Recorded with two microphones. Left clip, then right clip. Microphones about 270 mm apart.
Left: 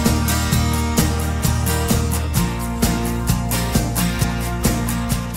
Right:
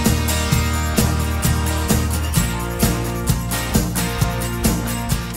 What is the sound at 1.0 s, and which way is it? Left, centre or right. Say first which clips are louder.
Music: right 1 dB; centre.